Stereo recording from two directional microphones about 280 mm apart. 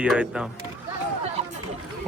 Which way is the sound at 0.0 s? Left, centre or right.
Centre.